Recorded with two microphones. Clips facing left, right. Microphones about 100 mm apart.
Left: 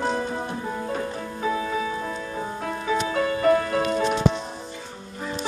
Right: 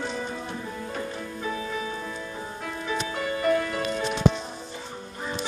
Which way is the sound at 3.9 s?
55° left (ahead or behind).